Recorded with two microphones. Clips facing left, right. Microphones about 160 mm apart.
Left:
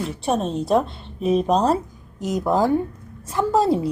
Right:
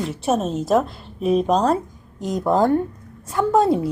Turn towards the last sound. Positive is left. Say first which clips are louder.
# right 1 dB
turn(degrees=0)  # may be behind; listen again after turning